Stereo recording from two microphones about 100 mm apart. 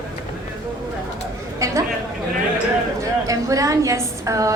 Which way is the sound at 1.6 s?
35° right (ahead or behind).